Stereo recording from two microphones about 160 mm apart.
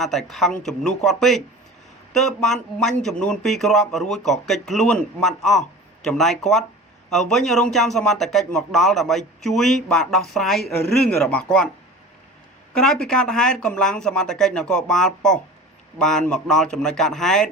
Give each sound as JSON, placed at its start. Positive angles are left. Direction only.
{"t": 0.0, "sound": "speech", "side_deg": 0}
{"t": 12.8, "sound": "speech", "side_deg": 5}